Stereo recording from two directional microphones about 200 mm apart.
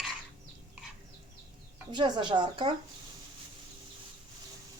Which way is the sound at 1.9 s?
25° right (ahead or behind).